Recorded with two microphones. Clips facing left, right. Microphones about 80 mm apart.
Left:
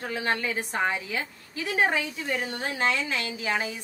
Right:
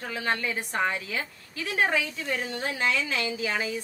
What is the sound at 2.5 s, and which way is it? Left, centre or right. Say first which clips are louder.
A woman's voice: even; left.